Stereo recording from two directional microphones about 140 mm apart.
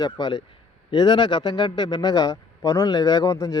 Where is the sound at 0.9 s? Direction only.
30° left (ahead or behind).